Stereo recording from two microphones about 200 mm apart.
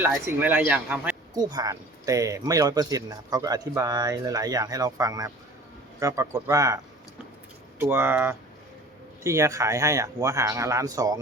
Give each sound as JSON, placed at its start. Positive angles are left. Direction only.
{"t": 0.0, "sound": "speech", "side_deg": -10}
{"t": 1.3, "sound": "speech", "side_deg": -20}
{"t": 7.8, "sound": "speech", "side_deg": -10}